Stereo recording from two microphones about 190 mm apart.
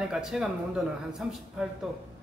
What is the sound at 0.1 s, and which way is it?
A man's voice, centre (ahead or behind).